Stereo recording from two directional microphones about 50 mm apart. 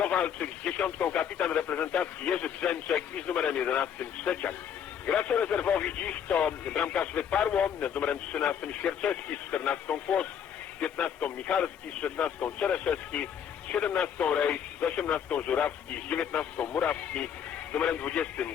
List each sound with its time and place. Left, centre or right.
0.0 s speech: left